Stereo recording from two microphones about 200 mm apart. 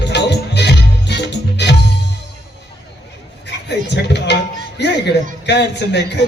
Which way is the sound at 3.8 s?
60° left (ahead or behind).